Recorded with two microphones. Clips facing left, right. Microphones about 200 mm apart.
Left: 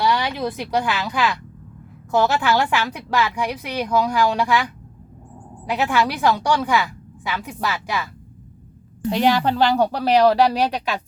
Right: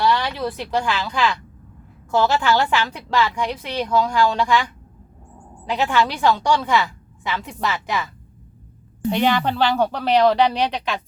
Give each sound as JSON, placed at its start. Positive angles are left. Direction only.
{"t": 0.0, "sound": "a woman's voice", "side_deg": 10}